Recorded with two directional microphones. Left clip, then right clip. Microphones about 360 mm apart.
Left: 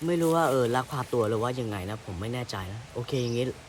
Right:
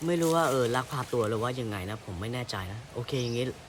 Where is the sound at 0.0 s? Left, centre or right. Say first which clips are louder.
Left 1 dB; centre.